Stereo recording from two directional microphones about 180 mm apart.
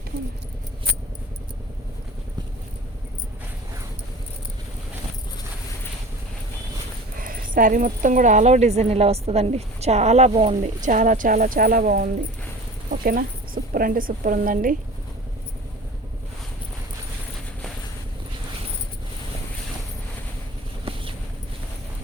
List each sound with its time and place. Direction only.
7.2 s a woman's voice: 50° right (ahead or behind)